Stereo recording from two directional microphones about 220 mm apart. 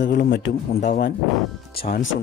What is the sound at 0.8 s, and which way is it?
Speech, 35° left (ahead or behind).